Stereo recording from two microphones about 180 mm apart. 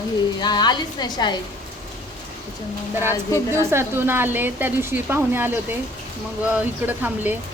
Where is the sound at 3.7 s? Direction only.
10° right (ahead or behind).